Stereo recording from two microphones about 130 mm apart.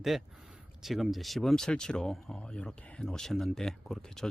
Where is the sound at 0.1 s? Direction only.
Centre (ahead or behind).